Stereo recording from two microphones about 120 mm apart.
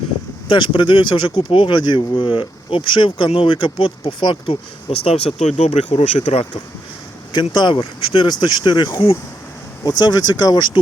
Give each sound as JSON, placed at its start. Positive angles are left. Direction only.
{"t": 0.4, "sound": "speech", "side_deg": 45}
{"t": 7.5, "sound": "speech", "side_deg": 40}